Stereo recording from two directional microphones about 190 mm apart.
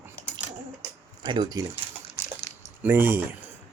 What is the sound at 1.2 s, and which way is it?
Speech, 20° right (ahead or behind).